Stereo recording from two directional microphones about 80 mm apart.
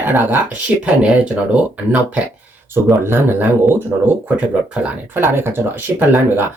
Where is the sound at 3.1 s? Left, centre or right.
Right.